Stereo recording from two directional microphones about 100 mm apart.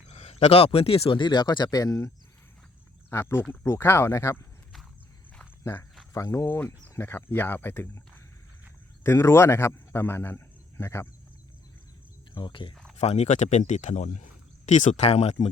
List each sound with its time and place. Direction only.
0.1 s a man's voice: 90° left; by 1.2 s 70° left (ahead or behind)
1.2 s speech: 50° left (ahead or behind)
3.1 s speech: 25° left (ahead or behind)
6.1 s a man's voice: 30° left (ahead or behind)
12.3 s speech: 55° left (ahead or behind)
13.0 s speech: 90° left
14.9 s speech: 90° left